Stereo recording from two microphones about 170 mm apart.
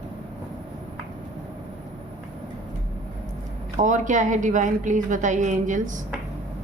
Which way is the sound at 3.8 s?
50° right (ahead or behind).